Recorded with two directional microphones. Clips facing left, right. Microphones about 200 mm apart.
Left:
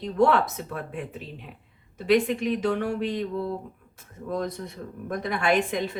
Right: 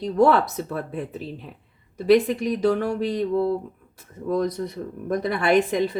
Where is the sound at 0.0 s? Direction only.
40° right (ahead or behind).